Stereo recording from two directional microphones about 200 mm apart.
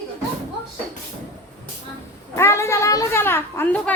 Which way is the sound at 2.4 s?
15° left (ahead or behind).